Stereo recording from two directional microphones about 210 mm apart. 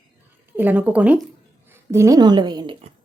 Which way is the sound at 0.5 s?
10° right (ahead or behind).